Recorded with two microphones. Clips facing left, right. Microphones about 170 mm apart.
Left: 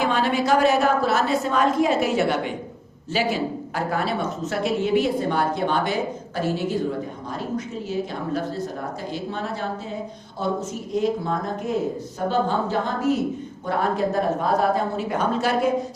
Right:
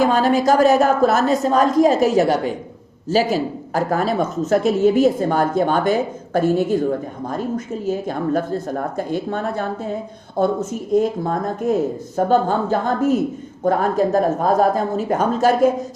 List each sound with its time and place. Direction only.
0.0 s a woman's voice: 40° right (ahead or behind)